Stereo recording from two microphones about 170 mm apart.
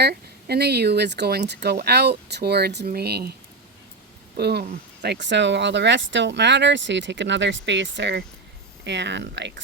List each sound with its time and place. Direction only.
0.0 s speech: 70° right (ahead or behind)
4.4 s speech: 75° right (ahead or behind)
5.0 s speech: 90° right